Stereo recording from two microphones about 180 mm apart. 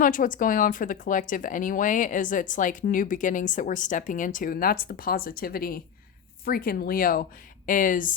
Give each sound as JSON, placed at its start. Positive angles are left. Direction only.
{"t": 0.0, "sound": "speech", "side_deg": 50}